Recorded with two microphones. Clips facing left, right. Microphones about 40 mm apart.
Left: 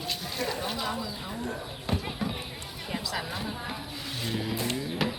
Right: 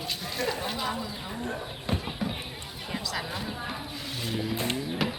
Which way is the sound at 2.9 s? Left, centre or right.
Centre.